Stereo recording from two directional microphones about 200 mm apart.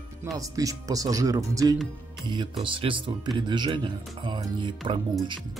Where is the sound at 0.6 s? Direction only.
15° right (ahead or behind).